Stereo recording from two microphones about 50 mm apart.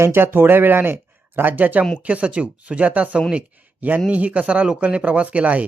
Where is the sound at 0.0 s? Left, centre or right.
Right.